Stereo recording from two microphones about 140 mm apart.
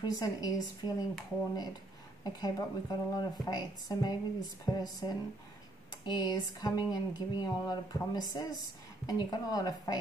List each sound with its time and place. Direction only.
0.0 s speech: 30° left (ahead or behind)
2.2 s speech: 30° left (ahead or behind)